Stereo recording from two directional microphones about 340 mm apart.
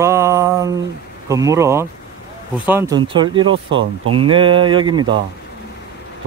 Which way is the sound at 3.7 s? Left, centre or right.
Right.